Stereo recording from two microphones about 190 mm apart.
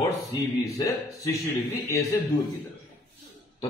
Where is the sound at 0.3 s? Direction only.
15° left (ahead or behind).